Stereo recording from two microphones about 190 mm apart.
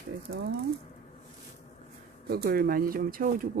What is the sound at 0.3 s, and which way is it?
Speech, 65° right (ahead or behind).